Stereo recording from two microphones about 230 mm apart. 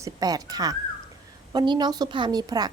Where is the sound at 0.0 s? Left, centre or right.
Centre.